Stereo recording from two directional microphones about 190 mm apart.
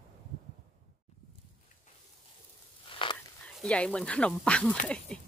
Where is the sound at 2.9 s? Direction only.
25° left (ahead or behind).